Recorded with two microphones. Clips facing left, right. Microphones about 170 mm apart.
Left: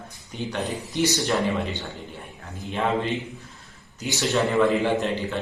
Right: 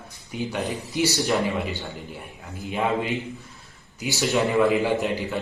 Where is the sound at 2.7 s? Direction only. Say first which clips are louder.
Even; 10° right (ahead or behind).